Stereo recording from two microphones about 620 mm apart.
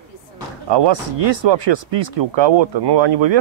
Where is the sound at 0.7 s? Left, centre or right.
Right.